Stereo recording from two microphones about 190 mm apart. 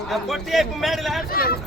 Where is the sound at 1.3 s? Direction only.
50° left (ahead or behind).